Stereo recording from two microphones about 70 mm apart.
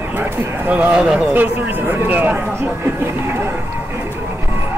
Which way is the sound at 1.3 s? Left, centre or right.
Right.